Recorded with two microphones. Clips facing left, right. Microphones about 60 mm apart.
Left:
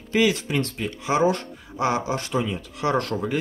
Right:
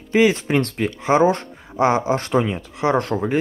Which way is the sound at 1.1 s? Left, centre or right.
Right.